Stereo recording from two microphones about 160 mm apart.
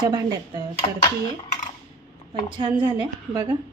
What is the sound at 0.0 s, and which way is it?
Speech, 25° right (ahead or behind).